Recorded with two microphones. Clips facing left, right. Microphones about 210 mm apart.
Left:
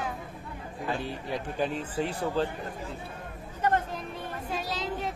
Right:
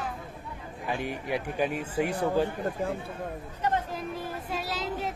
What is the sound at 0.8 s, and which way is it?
Speech, 15° right (ahead or behind).